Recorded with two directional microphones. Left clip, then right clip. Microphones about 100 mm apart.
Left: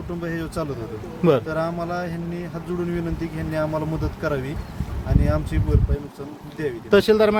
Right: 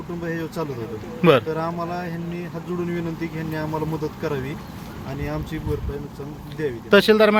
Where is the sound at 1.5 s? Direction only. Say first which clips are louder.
Left 1 dB; 60° left (ahead or behind).